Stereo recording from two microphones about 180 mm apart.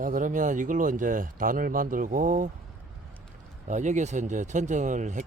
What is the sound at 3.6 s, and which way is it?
Speech, 40° right (ahead or behind).